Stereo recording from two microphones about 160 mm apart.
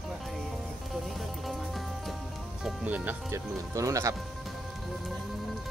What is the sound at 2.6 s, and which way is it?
Speech, 10° right (ahead or behind).